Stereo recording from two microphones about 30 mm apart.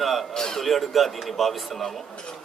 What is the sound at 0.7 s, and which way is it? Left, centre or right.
Speech, centre.